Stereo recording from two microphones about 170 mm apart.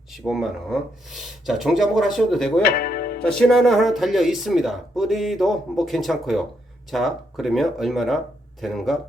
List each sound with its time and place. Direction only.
0.1 s speech: centre (ahead or behind)
2.6 s music: 60° left (ahead or behind)
3.2 s speech: 5° left (ahead or behind)